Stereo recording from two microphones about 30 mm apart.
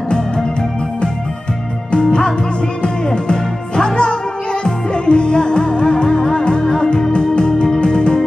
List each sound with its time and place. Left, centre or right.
3.3 s music: left